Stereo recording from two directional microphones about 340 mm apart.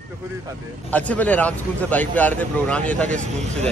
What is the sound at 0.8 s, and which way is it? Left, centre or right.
A man's voice, centre.